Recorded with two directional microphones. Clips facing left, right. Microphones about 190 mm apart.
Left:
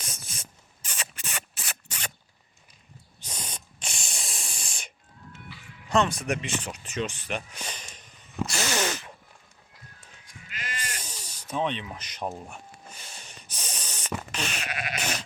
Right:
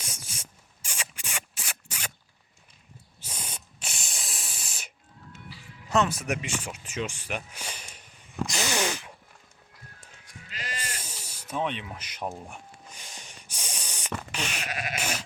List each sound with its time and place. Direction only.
0.0 s rodents: 10° right (ahead or behind)
3.2 s spray: 10° right (ahead or behind)
5.5 s music: 35° right (ahead or behind)
5.9 s speech: 5° right (ahead or behind)
8.4 s sneeze: 15° right (ahead or behind)
10.5 s sheep: 35° right (ahead or behind)
10.9 s spray: 10° right (ahead or behind)
11.9 s speech: 10° right (ahead or behind)
12.5 s snort: 15° right (ahead or behind)
14.3 s sheep: 10° right (ahead or behind)
14.7 s sheep: 40° right (ahead or behind)
14.9 s sheep: 10° right (ahead or behind)